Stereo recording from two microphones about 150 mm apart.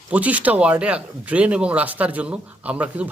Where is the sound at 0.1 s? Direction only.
10° right (ahead or behind).